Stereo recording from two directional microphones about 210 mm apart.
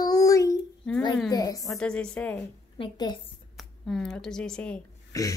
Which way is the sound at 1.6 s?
Centre (ahead or behind).